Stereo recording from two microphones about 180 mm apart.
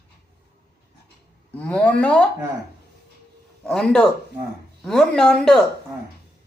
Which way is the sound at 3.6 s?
5° left (ahead or behind).